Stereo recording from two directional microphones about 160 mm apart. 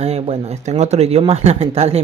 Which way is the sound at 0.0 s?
40° right (ahead or behind).